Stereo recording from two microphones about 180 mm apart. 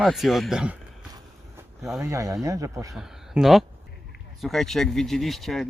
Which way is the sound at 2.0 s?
15° right (ahead or behind).